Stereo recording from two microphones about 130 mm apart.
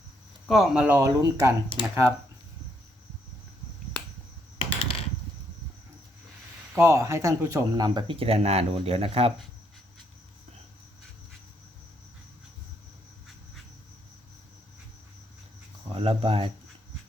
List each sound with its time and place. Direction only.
0.4 s speech: centre (ahead or behind)
0.9 s speech: 25° right (ahead or behind)
4.5 s typing: 45° left (ahead or behind)
6.7 s speech: 20° right (ahead or behind); by 9.3 s 50° right (ahead or behind)
15.9 s speech: 45° right (ahead or behind)